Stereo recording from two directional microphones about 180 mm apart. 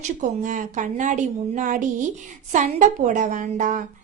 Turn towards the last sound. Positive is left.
turn(degrees=-45)  # may be behind; listen again after turning